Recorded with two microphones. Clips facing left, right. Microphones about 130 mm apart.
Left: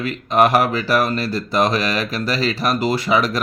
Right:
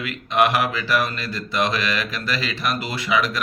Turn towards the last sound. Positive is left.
turn(degrees=40)  # may be behind; listen again after turning